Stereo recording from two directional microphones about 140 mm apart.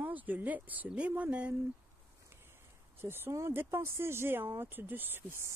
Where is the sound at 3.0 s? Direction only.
15° right (ahead or behind).